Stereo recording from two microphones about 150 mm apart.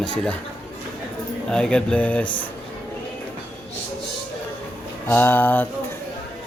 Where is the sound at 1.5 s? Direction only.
5° left (ahead or behind).